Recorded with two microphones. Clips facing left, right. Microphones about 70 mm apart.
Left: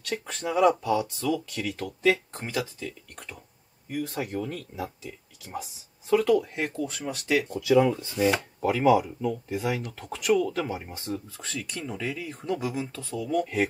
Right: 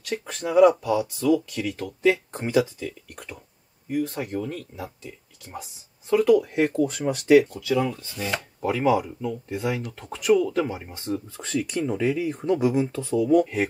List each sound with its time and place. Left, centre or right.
0.0 s speech: centre
2.3 s speech: centre
7.4 s speech: centre
8.6 s speech: centre
11.3 s speech: centre